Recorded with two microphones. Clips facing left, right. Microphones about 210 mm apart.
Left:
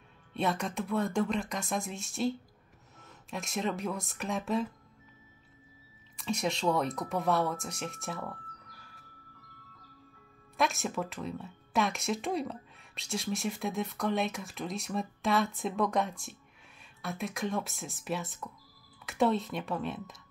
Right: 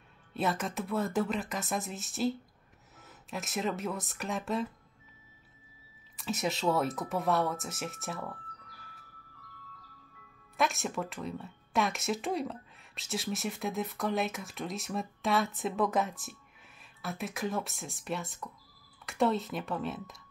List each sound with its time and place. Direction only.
0.3 s speech: centre (ahead or behind)
6.1 s speech: centre (ahead or behind)
10.6 s speech: centre (ahead or behind)